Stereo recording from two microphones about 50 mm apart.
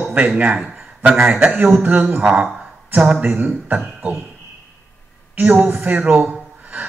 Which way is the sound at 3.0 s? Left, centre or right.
Right.